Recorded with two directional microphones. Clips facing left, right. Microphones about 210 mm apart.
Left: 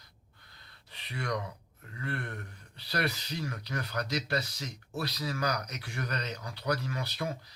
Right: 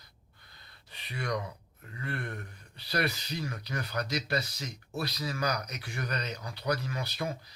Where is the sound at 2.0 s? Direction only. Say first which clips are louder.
Even; 15° right (ahead or behind).